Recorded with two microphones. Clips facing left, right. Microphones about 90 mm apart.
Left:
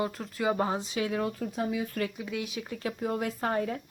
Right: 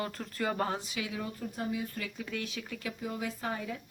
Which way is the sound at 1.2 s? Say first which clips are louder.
Left 5 dB; 75° left (ahead or behind).